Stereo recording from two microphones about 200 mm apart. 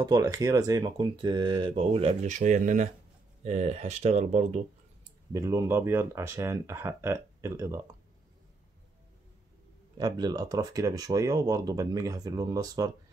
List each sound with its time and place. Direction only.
0.0 s speech: 15° right (ahead or behind); by 4.6 s 35° right (ahead or behind)
5.3 s speech: 15° right (ahead or behind)
9.9 s speech: 20° right (ahead or behind)